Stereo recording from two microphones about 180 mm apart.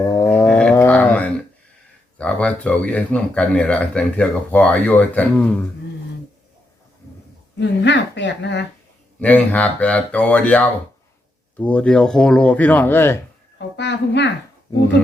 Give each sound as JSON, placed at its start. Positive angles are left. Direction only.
{"t": 0.3, "sound": "dog", "side_deg": 10}
{"t": 2.1, "sound": "speech", "side_deg": 5}
{"t": 7.9, "sound": "speech", "side_deg": 75}
{"t": 9.1, "sound": "speech", "side_deg": 10}
{"t": 13.6, "sound": "a sound", "side_deg": 75}